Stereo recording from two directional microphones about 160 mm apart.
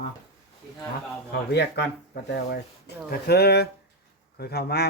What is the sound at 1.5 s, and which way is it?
A man's voice, 90° left.